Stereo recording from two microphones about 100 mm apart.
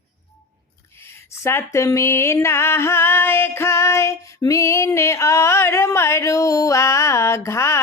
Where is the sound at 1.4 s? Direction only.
25° left (ahead or behind).